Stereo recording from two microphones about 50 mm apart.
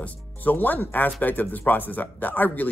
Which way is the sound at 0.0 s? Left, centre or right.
Left.